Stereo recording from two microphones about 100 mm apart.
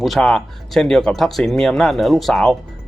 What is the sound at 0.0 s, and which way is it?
Speech, 5° left (ahead or behind).